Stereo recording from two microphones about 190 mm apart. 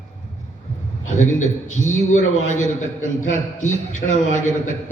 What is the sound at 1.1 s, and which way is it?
A man's voice, 40° left (ahead or behind).